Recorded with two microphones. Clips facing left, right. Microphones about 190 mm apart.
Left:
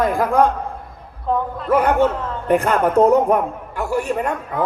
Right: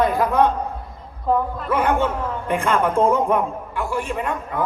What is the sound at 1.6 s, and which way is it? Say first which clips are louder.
A man's voice: left 6 dB; 40° left (ahead or behind).